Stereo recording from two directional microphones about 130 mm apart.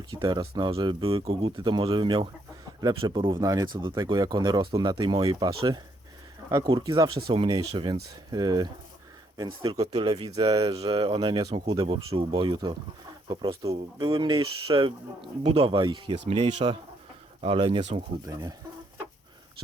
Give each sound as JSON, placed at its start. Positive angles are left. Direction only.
{"t": 0.1, "sound": "speech", "side_deg": -30}